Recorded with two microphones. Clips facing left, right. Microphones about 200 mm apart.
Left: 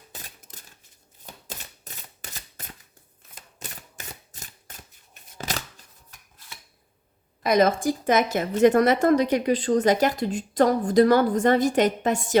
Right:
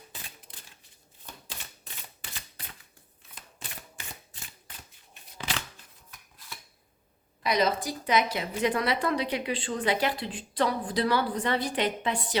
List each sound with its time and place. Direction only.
0.1 s a sound: 40° left (ahead or behind)
1.9 s camera: 40° left (ahead or behind)
2.6 s a sound: 45° left (ahead or behind)
3.6 s camera: 40° left (ahead or behind)
5.4 s scissors: 40° left (ahead or behind)
7.4 s a woman's voice: 50° left (ahead or behind)